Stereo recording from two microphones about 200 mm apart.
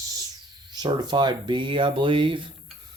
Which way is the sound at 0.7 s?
20° right (ahead or behind).